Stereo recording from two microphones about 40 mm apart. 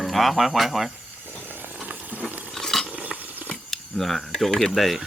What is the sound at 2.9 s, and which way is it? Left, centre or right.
Stir, right.